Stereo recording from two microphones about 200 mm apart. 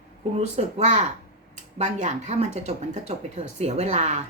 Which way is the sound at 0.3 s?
35° right (ahead or behind).